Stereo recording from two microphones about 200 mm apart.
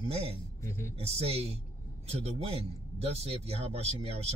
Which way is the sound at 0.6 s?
15° left (ahead or behind).